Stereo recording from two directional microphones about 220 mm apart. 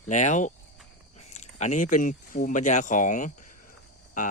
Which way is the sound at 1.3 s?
30° left (ahead or behind).